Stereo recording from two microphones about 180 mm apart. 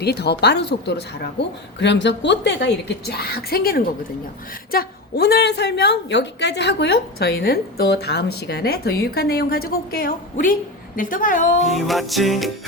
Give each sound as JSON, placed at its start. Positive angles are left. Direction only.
{"t": 0.0, "sound": "speech", "side_deg": 65}
{"t": 3.1, "sound": "a woman's voice", "side_deg": 60}
{"t": 11.7, "sound": "music", "side_deg": 0}